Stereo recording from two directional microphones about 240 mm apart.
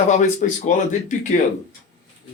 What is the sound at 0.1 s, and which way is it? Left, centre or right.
Speech, left.